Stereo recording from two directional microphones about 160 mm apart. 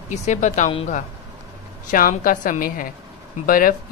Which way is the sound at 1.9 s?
60° left (ahead or behind).